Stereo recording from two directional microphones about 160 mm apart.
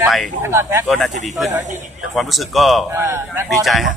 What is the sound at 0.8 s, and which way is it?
Speech, centre (ahead or behind).